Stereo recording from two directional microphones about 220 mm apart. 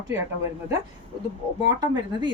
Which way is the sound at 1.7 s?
20° right (ahead or behind).